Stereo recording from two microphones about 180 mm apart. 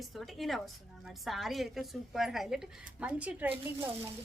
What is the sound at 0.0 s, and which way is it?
A woman's voice, centre (ahead or behind).